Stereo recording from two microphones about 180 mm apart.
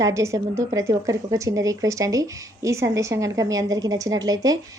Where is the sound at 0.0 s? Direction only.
15° right (ahead or behind).